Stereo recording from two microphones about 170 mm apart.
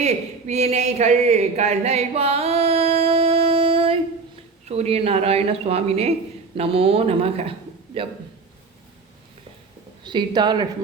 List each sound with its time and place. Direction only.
0.0 s speech: 40° right (ahead or behind)
10.0 s a woman's voice: 25° right (ahead or behind)